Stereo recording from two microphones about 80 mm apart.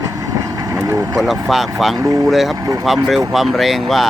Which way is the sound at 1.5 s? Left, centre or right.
Centre.